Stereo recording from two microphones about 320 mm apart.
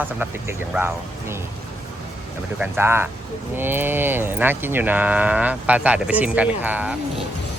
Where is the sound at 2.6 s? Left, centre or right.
Centre.